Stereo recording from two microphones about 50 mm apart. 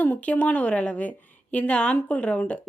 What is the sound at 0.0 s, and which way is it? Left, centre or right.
A woman's voice, left.